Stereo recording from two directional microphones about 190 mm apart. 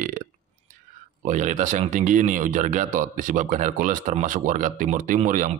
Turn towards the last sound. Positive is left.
turn(degrees=-45)  # may be behind; listen again after turning